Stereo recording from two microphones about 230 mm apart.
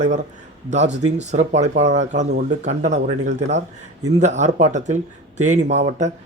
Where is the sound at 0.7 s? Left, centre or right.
Right.